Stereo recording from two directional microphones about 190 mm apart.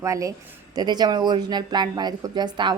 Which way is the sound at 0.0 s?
15° right (ahead or behind).